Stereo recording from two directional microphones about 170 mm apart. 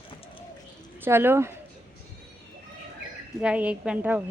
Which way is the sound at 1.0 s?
15° right (ahead or behind).